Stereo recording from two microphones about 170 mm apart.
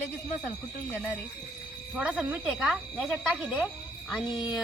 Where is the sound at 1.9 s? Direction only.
5° right (ahead or behind).